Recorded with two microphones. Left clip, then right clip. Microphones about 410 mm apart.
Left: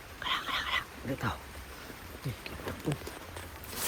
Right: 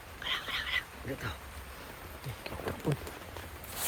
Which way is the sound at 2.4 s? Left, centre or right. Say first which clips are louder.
Right 2 dB; right.